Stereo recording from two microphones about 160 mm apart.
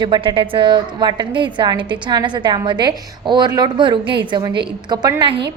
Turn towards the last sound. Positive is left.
turn(degrees=-25)  # may be behind; listen again after turning